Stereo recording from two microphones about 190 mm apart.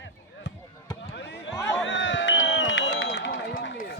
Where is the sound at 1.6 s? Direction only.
15° left (ahead or behind).